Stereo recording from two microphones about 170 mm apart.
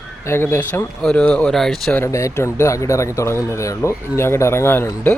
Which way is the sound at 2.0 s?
15° left (ahead or behind).